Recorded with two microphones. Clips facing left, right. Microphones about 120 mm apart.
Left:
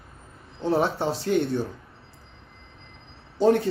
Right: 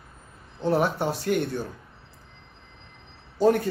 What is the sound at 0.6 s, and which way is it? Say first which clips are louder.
Speech: even; 25° left (ahead or behind).